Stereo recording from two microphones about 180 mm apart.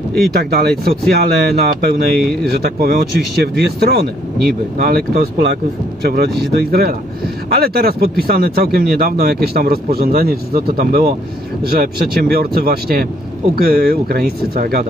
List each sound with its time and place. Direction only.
0.3 s speech: 60° right (ahead or behind)